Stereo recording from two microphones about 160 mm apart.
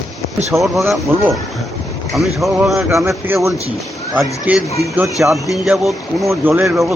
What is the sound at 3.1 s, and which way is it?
A man's voice, 15° right (ahead or behind).